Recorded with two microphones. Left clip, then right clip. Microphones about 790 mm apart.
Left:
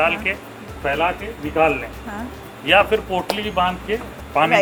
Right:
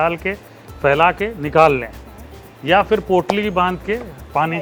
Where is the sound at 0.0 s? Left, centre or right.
Right.